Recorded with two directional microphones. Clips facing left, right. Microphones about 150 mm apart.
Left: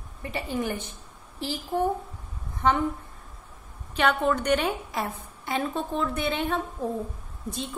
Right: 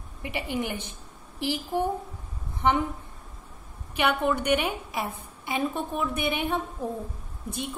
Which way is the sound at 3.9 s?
15° right (ahead or behind).